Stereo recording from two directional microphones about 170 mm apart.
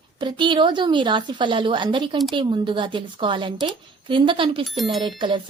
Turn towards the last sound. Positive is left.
turn(degrees=-30)  # may be behind; listen again after turning